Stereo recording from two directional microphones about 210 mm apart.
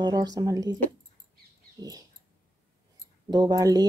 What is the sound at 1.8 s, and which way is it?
Speech, 15° right (ahead or behind).